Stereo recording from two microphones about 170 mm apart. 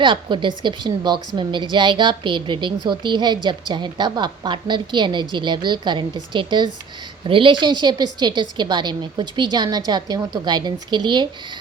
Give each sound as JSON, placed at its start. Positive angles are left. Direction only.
{"t": 0.0, "sound": "a woman's voice", "side_deg": -30}